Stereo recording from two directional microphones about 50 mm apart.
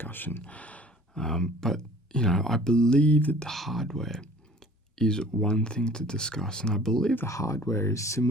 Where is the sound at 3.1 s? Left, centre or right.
Left.